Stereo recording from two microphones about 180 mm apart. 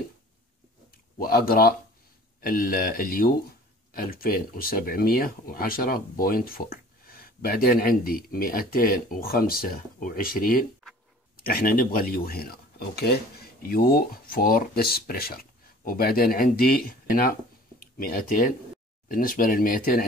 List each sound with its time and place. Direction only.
1.2 s speech: 55° left (ahead or behind)